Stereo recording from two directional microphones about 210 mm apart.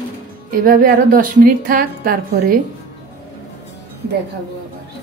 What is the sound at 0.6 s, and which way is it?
A woman's voice, 40° right (ahead or behind).